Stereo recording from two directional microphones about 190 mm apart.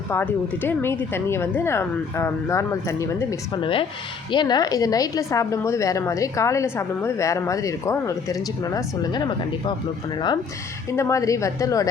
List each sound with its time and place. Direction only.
0.1 s a woman's voice: 10° left (ahead or behind)
10.9 s a woman's voice: 15° left (ahead or behind)